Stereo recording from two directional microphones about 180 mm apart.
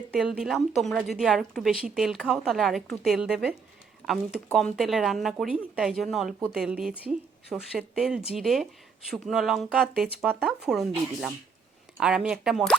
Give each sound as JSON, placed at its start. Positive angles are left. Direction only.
{"t": 0.2, "sound": "a woman's voice", "side_deg": 0}